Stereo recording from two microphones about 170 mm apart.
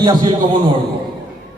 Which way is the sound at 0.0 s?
25° right (ahead or behind).